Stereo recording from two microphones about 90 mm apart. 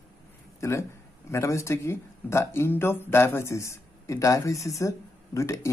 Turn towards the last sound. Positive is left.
turn(degrees=35)  # may be behind; listen again after turning